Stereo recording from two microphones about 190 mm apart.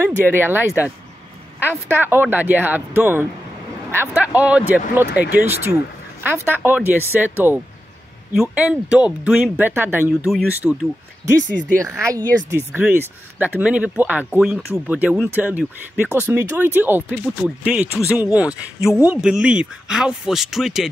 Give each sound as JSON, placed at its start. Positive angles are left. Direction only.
{"t": 0.0, "sound": "speech", "side_deg": -10}
{"t": 11.8, "sound": "speech", "side_deg": -15}